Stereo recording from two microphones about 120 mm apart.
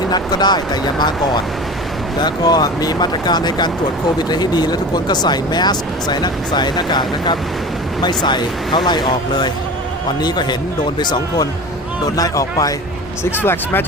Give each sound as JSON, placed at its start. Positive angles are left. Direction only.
{"t": 0.1, "sound": "speech", "side_deg": 35}
{"t": 13.3, "sound": "speech", "side_deg": 20}